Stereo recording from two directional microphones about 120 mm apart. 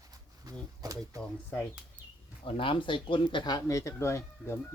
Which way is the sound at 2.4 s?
45° left (ahead or behind).